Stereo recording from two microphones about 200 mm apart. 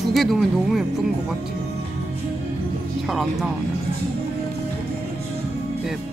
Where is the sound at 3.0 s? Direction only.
Centre (ahead or behind).